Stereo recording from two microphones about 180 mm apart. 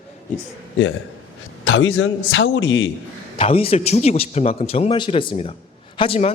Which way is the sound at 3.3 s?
35° left (ahead or behind).